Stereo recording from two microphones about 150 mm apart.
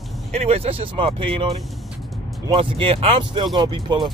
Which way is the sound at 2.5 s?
35° right (ahead or behind).